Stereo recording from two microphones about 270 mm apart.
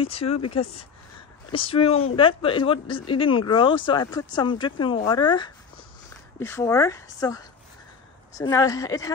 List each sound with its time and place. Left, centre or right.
0.0 s speech: left